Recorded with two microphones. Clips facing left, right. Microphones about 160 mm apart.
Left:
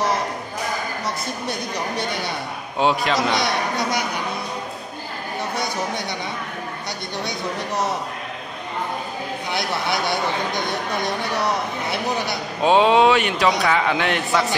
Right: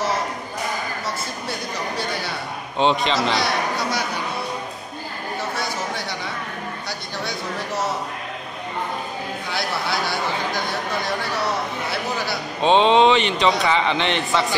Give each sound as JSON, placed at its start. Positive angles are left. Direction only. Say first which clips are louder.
{"t": 2.8, "sound": "speech", "louder": "even", "side_deg": 5}
{"t": 3.2, "sound": "a man's voice", "louder": "even", "side_deg": 20}
{"t": 9.5, "sound": "speech", "louder": "left 2 dB", "side_deg": 20}
{"t": 12.6, "sound": "speech", "louder": "even", "side_deg": 10}